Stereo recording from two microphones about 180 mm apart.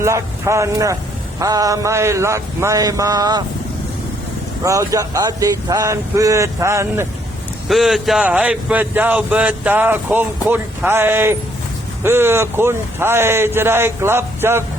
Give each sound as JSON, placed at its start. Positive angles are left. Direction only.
{"t": 0.0, "sound": "speech", "side_deg": -15}
{"t": 4.6, "sound": "speech", "side_deg": -15}
{"t": 7.7, "sound": "speech", "side_deg": 0}